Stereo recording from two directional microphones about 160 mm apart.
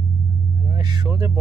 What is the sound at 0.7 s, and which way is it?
Speech, 25° right (ahead or behind).